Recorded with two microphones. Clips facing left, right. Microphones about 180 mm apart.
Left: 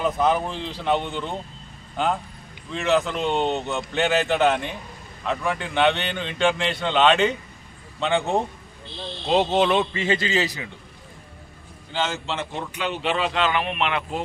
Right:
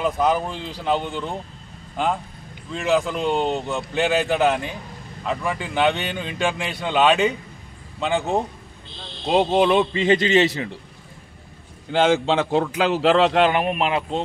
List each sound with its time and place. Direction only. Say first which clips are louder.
0.0 s a man's voice: right 1 dB; centre (ahead or behind)
2.7 s a man's voice: right 1 dB; centre (ahead or behind); by 10.7 s 25° right (ahead or behind)
12.1 s a man's voice: right 11 dB; 80° right; by 14.2 s 35° right (ahead or behind)